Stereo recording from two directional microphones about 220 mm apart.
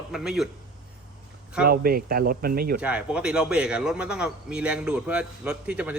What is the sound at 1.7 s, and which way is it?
Speech, 45° right (ahead or behind).